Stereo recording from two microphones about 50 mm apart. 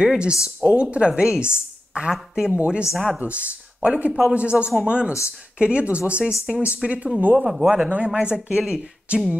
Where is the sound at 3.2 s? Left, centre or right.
Right.